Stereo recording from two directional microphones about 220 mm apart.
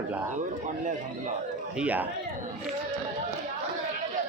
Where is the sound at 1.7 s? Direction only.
5° right (ahead or behind).